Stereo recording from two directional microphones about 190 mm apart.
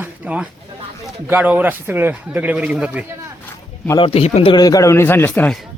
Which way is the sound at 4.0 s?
30° left (ahead or behind).